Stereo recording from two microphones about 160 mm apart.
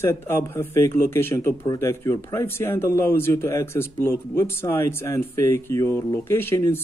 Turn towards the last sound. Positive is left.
turn(degrees=15)  # may be behind; listen again after turning